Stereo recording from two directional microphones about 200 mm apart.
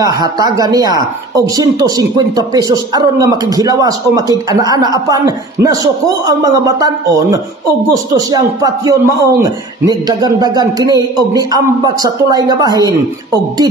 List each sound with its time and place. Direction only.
0.0 s a man's voice: 20° right (ahead or behind)